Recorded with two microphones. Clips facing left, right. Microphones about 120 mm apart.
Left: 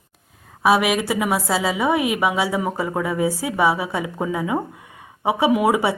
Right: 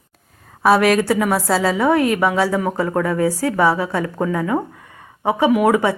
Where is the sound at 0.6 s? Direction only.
Centre (ahead or behind).